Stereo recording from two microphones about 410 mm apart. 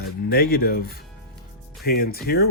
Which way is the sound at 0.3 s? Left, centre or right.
Left.